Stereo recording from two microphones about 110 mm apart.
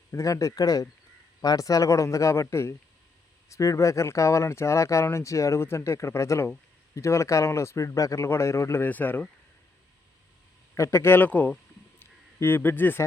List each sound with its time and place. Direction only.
0.1 s speech: 30° left (ahead or behind)
10.8 s speech: 25° left (ahead or behind)
11.9 s a sound: 20° left (ahead or behind)